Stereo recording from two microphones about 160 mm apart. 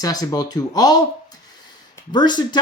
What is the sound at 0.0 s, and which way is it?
Speech, 25° left (ahead or behind).